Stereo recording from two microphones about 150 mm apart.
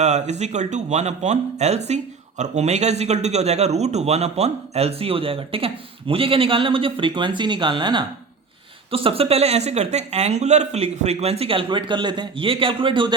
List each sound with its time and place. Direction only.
0.0 s a man's voice: 50° right (ahead or behind); by 13.1 s 35° right (ahead or behind)